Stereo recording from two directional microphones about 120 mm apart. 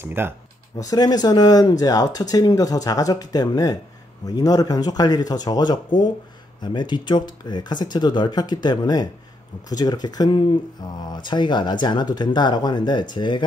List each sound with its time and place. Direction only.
0.0 s speech: 20° right (ahead or behind)
0.7 s speech: 35° left (ahead or behind)